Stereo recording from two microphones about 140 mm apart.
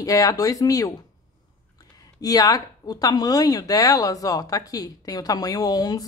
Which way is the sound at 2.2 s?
25° left (ahead or behind).